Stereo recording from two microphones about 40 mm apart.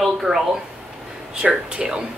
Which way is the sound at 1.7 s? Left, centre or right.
Right.